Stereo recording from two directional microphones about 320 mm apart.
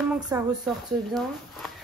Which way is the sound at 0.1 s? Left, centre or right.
Centre.